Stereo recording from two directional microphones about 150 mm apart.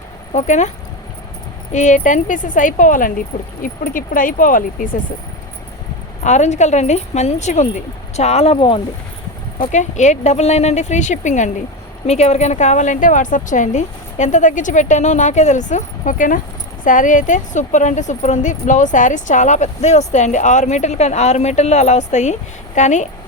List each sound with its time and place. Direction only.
0.3 s speech: 55° left (ahead or behind)
1.7 s a woman's voice: 55° left (ahead or behind)
6.2 s speech: 50° left (ahead or behind)
9.6 s a woman's voice: 55° left (ahead or behind)